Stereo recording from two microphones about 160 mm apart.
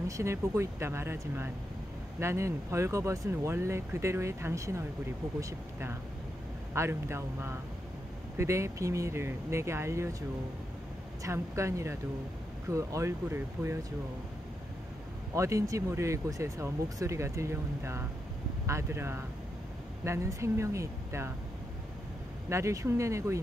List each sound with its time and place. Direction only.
0.2 s speech: 15° right (ahead or behind)
11.2 s speech: 20° right (ahead or behind)
15.3 s speech: 20° right (ahead or behind)
22.5 s speech: 20° right (ahead or behind)